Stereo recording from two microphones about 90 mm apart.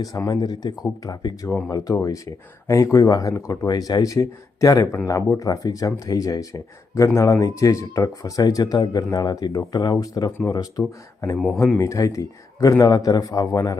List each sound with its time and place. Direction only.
0.0 s speech: 40° left (ahead or behind)